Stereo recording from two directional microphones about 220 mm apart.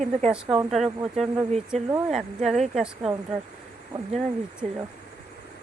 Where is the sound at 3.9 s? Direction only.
20° right (ahead or behind).